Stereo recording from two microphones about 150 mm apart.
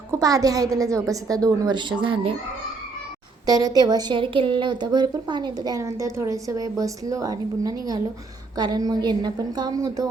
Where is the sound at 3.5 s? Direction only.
25° right (ahead or behind).